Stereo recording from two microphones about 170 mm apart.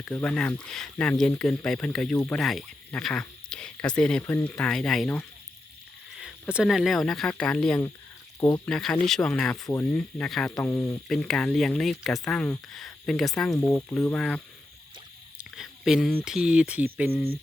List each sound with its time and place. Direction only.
0.0 s speech: 5° left (ahead or behind)
8.4 s speech: 25° left (ahead or behind)
8.6 s speech: 5° left (ahead or behind)
15.4 s a sound: centre (ahead or behind)
16.2 s speech: 5° right (ahead or behind)